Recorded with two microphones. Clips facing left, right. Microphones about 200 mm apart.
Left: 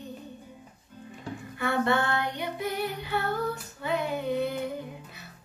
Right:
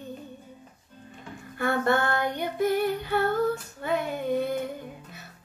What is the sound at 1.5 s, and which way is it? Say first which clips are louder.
Child singing: right 2 dB; 50° right (ahead or behind).